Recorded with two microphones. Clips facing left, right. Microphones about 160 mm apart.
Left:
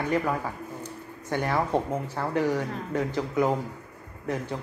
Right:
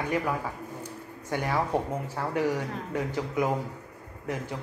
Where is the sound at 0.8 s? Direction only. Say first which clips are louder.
Left 1 dB; 10° right (ahead or behind).